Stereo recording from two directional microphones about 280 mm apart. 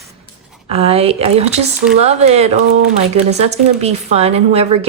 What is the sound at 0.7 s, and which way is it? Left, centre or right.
Speech, right.